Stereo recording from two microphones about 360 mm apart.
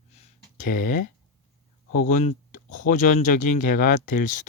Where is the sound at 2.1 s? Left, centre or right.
Centre.